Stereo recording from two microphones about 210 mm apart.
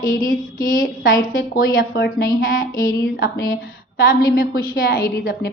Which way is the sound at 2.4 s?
40° left (ahead or behind).